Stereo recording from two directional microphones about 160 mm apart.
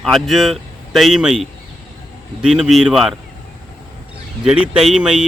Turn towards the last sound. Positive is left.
turn(degrees=-5)  # may be behind; listen again after turning